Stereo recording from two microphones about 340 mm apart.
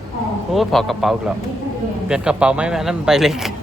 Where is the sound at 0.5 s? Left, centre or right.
Centre.